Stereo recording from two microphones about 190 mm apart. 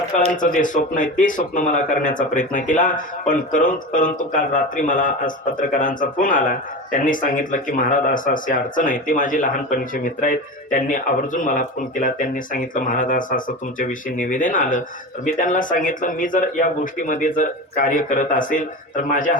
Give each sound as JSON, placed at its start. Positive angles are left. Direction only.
{"t": 0.3, "sound": "speech", "side_deg": 45}